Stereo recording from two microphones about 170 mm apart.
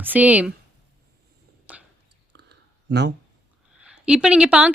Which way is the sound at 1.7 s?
10° right (ahead or behind).